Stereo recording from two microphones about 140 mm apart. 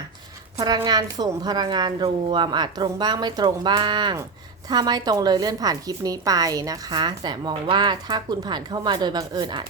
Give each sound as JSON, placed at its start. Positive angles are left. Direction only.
{"t": 0.9, "sound": "a woman's voice", "side_deg": -30}